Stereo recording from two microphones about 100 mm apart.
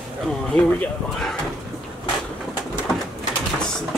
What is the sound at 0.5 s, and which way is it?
Speech, 15° left (ahead or behind).